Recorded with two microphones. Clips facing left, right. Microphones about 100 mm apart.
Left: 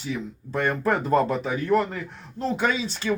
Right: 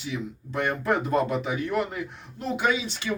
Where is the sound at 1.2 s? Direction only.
15° right (ahead or behind).